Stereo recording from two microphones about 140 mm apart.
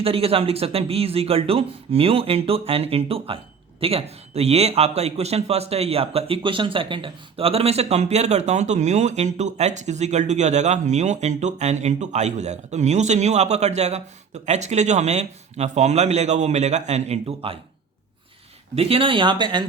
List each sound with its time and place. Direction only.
0.0 s a man's voice: 45° right (ahead or behind)
18.8 s speech: 40° right (ahead or behind)